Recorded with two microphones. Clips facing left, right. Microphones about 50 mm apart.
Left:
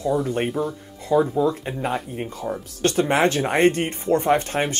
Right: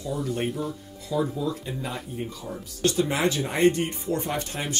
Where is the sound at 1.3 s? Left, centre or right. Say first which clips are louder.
Left 8 dB; left.